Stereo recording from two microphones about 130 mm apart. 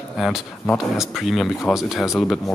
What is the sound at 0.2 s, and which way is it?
Speech, centre (ahead or behind).